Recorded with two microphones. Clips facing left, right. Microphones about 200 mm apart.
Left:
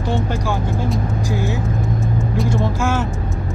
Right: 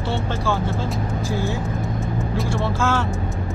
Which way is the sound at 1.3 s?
15° left (ahead or behind).